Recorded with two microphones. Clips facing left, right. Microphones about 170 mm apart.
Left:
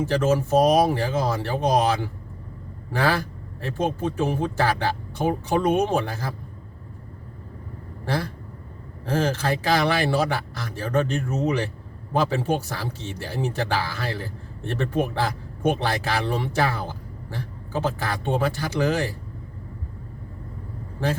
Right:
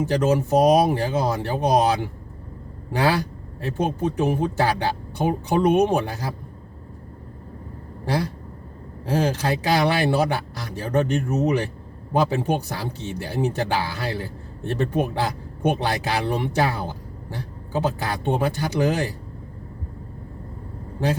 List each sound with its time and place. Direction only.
0.0 s speech: 15° right (ahead or behind)
8.0 s a sound: 15° right (ahead or behind)
9.0 s speech: 15° right (ahead or behind)